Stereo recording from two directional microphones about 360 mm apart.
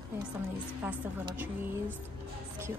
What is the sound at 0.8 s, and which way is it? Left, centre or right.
Speech, centre.